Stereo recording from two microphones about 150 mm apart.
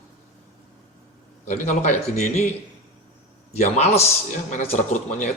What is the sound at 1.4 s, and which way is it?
Speech, 55° left (ahead or behind).